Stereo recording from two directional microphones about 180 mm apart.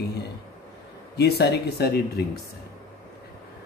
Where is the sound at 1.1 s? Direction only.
65° left (ahead or behind).